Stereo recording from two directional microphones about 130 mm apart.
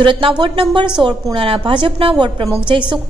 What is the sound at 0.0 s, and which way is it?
A woman's voice, 40° right (ahead or behind).